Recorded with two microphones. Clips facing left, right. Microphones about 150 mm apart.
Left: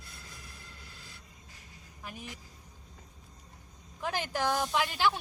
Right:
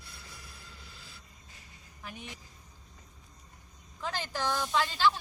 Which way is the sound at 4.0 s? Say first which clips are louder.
Left 2 dB; 15° left (ahead or behind).